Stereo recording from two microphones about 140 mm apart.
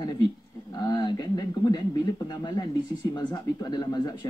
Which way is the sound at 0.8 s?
30° left (ahead or behind).